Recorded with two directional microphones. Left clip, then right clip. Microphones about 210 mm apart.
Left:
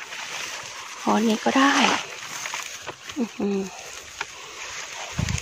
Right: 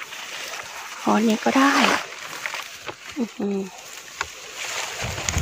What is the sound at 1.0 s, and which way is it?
Speech, 10° right (ahead or behind).